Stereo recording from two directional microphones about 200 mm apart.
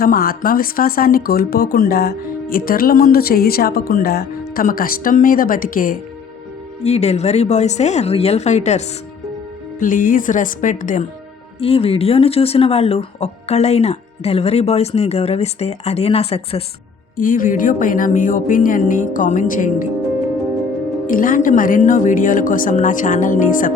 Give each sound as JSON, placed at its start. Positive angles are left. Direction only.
{"t": 0.0, "sound": "speech", "side_deg": 45}
{"t": 6.8, "sound": "speech", "side_deg": 30}
{"t": 9.8, "sound": "speech", "side_deg": 40}
{"t": 11.6, "sound": "speech", "side_deg": 30}
{"t": 17.2, "sound": "speech", "side_deg": 45}
{"t": 21.1, "sound": "speech", "side_deg": 45}